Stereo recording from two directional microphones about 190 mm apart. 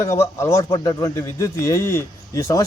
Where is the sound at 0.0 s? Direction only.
15° left (ahead or behind).